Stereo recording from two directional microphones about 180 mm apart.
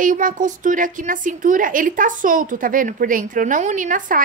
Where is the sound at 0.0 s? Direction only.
45° right (ahead or behind).